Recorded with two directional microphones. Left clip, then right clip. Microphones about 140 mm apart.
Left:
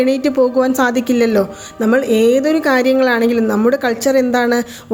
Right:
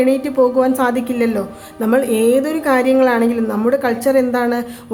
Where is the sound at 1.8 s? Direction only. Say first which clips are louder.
Left 2 dB; 20° left (ahead or behind).